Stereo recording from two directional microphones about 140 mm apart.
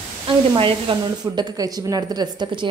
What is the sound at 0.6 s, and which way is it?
A woman's voice, 35° right (ahead or behind).